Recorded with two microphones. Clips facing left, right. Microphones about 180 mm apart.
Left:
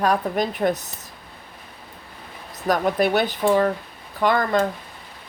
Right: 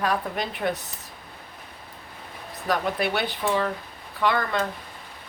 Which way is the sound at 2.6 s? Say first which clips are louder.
Left 5 dB; 45° left (ahead or behind).